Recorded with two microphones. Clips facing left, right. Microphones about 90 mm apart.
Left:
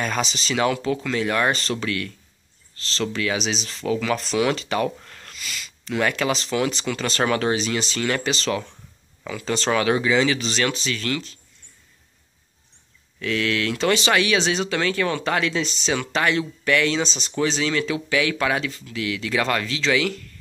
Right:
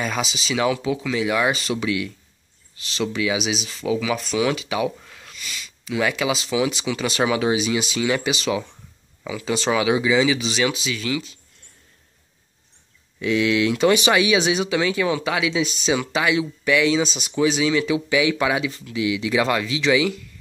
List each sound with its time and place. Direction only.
0.0 s speech: 5° right (ahead or behind)
13.2 s speech: 15° right (ahead or behind)